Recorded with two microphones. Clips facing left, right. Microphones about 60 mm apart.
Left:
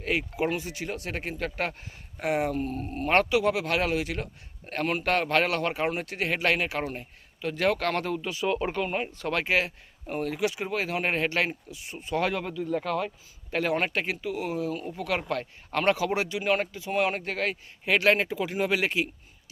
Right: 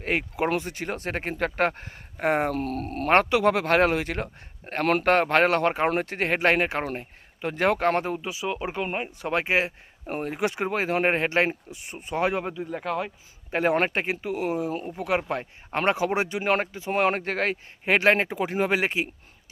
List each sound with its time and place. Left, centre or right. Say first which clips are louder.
0.0 s speech: right 2 dB; right
3.1 s speech: right 3 dB; right
5.0 s speech: right 4 dB; right